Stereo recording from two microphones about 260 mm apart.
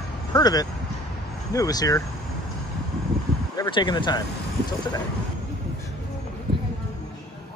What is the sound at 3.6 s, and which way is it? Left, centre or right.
Speech, centre.